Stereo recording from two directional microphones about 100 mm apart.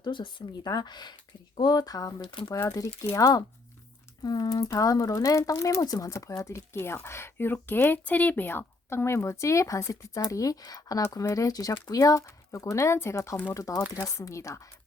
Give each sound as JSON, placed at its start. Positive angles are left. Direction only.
{"t": 0.0, "sound": "speech", "side_deg": 55}
{"t": 2.2, "sound": "speech", "side_deg": 60}
{"t": 2.5, "sound": "speech", "side_deg": 35}